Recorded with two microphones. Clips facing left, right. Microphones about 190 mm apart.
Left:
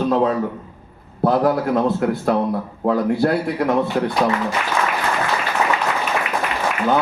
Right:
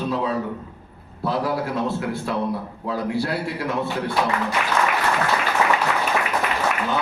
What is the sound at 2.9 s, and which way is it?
Speech, 55° left (ahead or behind).